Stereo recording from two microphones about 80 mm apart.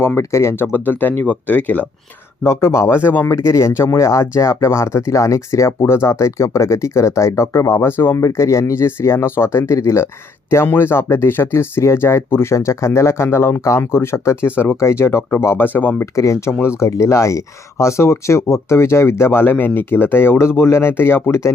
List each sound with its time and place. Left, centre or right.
0.2 s speech: left
2.4 s speech: left
3.2 s speech: left
8.2 s speech: left
16.1 s speech: left